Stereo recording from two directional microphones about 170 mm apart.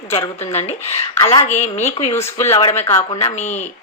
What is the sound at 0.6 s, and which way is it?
A woman's voice, 40° left (ahead or behind).